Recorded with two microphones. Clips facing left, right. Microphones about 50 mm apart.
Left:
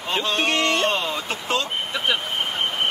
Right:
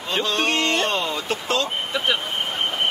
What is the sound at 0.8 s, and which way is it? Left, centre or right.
Speech, centre.